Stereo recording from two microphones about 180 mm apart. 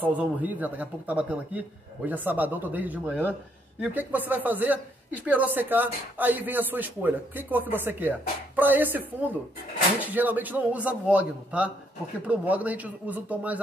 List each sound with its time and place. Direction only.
0.0 s speech: 10° right (ahead or behind)